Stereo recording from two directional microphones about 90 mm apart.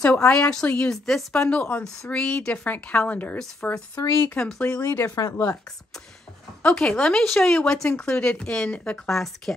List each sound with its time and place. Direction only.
0.0 s speech: 10° left (ahead or behind)
1.5 s speech: 15° left (ahead or behind)
5.0 s speech: 40° left (ahead or behind)
6.6 s speech: 10° left (ahead or behind)